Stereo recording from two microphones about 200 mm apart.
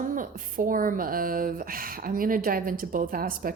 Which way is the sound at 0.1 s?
40° right (ahead or behind).